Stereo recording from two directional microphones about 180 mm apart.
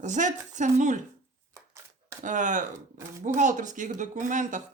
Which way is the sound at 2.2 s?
45° right (ahead or behind).